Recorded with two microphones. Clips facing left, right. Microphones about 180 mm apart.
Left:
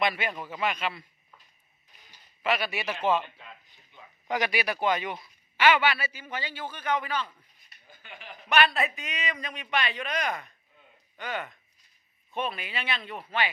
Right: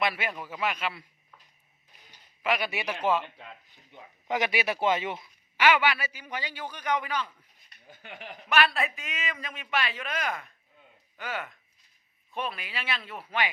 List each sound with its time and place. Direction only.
0.0 s a man's voice: 5° right (ahead or behind)
2.4 s a man's voice: 15° right (ahead or behind)
4.3 s speech: 20° right (ahead or behind)
5.5 s a man's voice: 10° right (ahead or behind)
7.9 s a sound: 70° right (ahead or behind)
8.4 s a man's voice: centre (ahead or behind)